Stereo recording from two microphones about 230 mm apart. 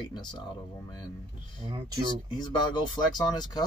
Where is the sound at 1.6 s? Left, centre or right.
Centre.